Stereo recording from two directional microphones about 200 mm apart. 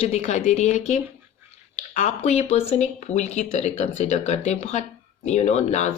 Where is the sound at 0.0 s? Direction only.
35° left (ahead or behind).